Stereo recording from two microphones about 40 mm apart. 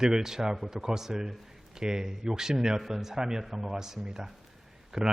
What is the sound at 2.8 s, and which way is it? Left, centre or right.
A man's voice, centre.